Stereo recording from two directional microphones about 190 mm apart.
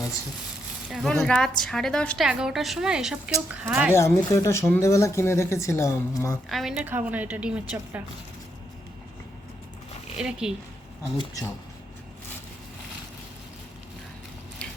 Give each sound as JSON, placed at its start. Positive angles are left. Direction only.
{"t": 0.9, "sound": "a woman's voice", "side_deg": 0}
{"t": 3.9, "sound": "speech", "side_deg": 15}
{"t": 6.5, "sound": "a woman's voice", "side_deg": 0}
{"t": 10.2, "sound": "a woman's voice", "side_deg": -5}
{"t": 11.2, "sound": "speech", "side_deg": 20}
{"t": 14.6, "sound": "biting", "side_deg": 5}